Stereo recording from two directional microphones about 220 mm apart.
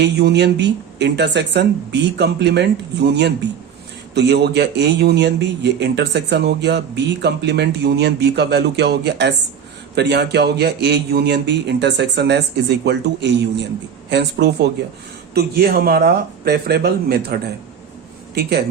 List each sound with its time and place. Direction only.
0.0 s a man's voice: 50° right (ahead or behind)
18.3 s a man's voice: 50° right (ahead or behind)